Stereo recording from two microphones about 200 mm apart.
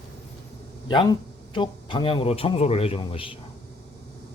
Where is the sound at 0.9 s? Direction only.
20° left (ahead or behind).